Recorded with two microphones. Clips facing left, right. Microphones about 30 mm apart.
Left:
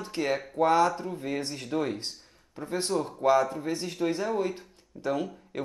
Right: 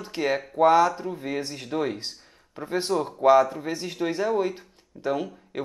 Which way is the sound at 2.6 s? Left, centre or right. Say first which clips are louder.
Right 3 dB; right.